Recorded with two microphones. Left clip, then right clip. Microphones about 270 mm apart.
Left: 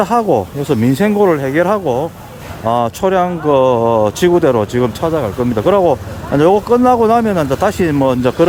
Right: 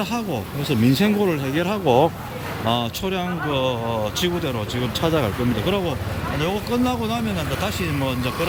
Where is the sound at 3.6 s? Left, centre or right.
Left.